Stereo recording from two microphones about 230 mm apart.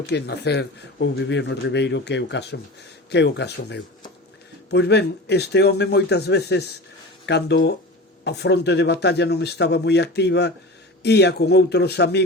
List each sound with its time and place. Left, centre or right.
0.1 s speech: left